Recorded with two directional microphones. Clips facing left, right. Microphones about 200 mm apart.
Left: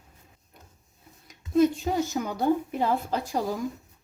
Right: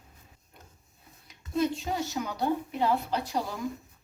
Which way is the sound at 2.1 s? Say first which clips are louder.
Left 4 dB; 45° left (ahead or behind).